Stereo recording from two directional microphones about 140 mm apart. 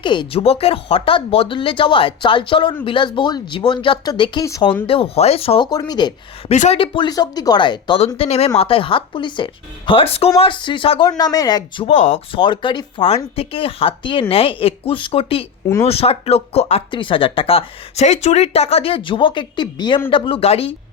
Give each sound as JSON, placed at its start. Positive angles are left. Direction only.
{"t": 0.0, "sound": "speech", "side_deg": 35}
{"t": 4.9, "sound": "speech", "side_deg": 40}
{"t": 5.7, "sound": "speech", "side_deg": 30}
{"t": 6.5, "sound": "speech", "side_deg": 55}
{"t": 6.7, "sound": "speech", "side_deg": 35}
{"t": 8.0, "sound": "speech", "side_deg": 45}
{"t": 11.2, "sound": "speech", "side_deg": 30}
{"t": 11.9, "sound": "speech", "side_deg": 55}
{"t": 12.3, "sound": "speech", "side_deg": 35}